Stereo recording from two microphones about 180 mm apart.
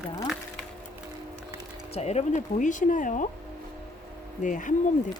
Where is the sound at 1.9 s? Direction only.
35° left (ahead or behind).